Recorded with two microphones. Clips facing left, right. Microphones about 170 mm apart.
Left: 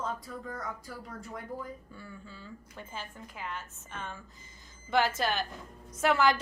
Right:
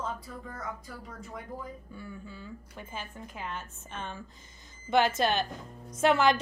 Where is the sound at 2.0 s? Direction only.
15° right (ahead or behind).